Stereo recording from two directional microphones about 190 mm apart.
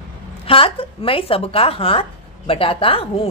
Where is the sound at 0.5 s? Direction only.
30° left (ahead or behind).